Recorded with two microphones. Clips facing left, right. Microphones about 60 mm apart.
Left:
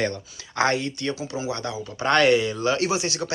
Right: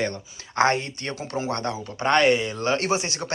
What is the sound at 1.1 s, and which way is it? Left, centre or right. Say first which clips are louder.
Speech: right 1 dB; right.